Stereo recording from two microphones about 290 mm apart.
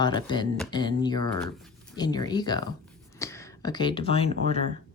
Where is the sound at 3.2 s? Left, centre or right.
Centre.